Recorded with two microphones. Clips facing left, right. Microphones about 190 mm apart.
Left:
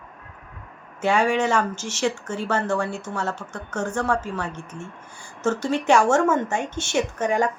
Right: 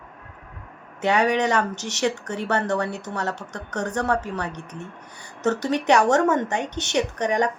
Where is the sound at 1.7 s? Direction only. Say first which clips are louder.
Even; 65° right (ahead or behind).